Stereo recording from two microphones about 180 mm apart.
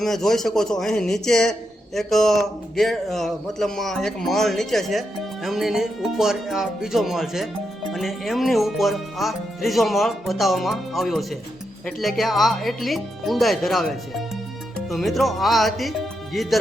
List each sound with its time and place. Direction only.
0.0 s a man's voice: centre (ahead or behind)